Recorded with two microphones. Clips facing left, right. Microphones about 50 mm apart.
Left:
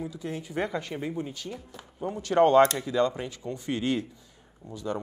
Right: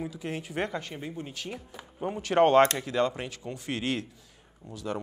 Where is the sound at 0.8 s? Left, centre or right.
Centre.